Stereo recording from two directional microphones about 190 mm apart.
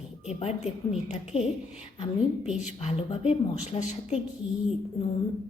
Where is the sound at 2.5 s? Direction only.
35° left (ahead or behind).